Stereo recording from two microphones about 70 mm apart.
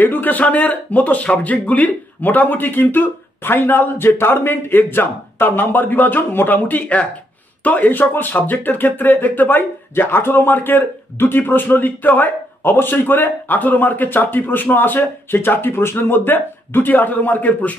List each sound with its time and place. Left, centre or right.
0.0 s speech: left